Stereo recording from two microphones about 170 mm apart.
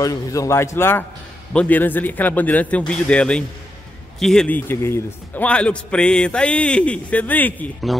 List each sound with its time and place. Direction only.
0.0 s a man's voice: 20° left (ahead or behind); by 8.0 s 5° left (ahead or behind)